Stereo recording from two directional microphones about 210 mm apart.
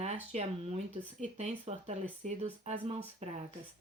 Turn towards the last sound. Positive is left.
turn(degrees=-30)  # may be behind; listen again after turning